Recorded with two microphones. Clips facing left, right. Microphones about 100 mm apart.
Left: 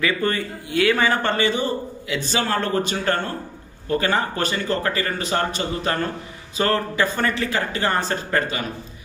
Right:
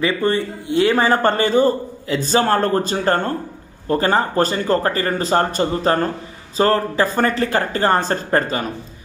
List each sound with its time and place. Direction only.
0.0 s a man's voice: 30° right (ahead or behind)